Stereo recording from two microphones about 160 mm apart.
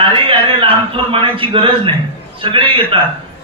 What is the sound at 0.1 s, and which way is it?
A man's voice, 35° right (ahead or behind).